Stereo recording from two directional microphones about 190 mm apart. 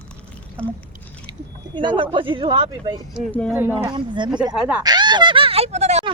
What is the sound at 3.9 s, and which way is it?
Speech, 25° right (ahead or behind).